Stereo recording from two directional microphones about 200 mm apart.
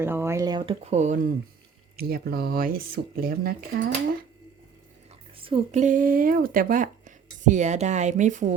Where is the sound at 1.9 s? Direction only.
50° right (ahead or behind).